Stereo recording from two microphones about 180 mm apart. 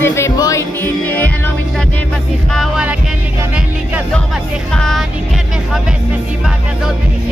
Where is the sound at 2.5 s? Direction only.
Centre (ahead or behind).